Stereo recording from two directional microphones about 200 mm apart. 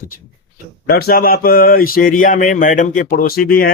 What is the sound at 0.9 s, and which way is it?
Speech, 50° left (ahead or behind).